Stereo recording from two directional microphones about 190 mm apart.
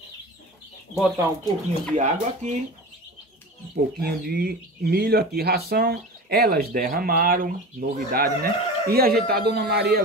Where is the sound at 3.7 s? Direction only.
55° right (ahead or behind).